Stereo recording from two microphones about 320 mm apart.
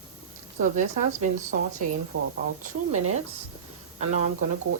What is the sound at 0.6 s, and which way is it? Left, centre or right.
Speech, right.